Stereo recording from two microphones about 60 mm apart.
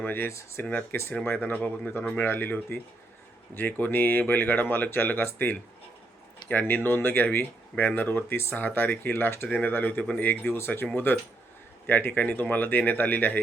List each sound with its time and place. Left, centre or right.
0.3 s speech: left
0.6 s speech: left
2.2 s speech: left
10.0 s speech: centre
10.2 s speech: left